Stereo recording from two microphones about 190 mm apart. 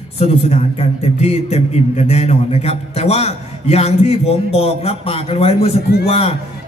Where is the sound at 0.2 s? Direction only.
35° left (ahead or behind).